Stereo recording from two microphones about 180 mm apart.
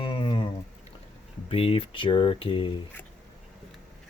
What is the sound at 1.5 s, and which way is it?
Speech, 30° left (ahead or behind).